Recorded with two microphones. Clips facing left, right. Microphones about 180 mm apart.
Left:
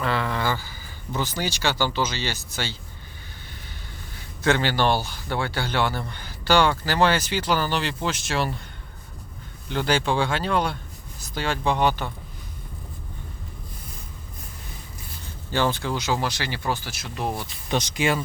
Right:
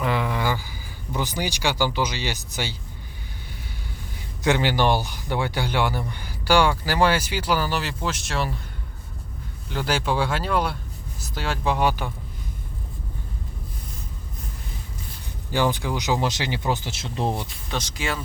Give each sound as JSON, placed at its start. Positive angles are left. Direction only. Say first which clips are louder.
{"t": 0.0, "sound": "a sound", "louder": "right 1 dB", "side_deg": -15}
{"t": 1.1, "sound": "speech", "louder": "even", "side_deg": -15}
{"t": 4.4, "sound": "speech", "louder": "right 1 dB", "side_deg": -15}
{"t": 9.6, "sound": "speech", "louder": "left 2 dB", "side_deg": -5}
{"t": 15.5, "sound": "speech", "louder": "right 1 dB", "side_deg": -15}
{"t": 17.7, "sound": "speech", "louder": "left 6 dB", "side_deg": 20}